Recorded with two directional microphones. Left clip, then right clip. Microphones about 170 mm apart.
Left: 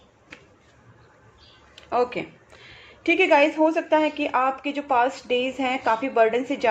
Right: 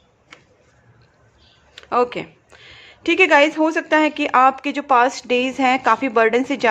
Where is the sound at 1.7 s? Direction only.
40° right (ahead or behind).